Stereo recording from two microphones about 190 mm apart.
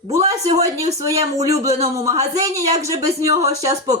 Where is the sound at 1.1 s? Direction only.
15° right (ahead or behind).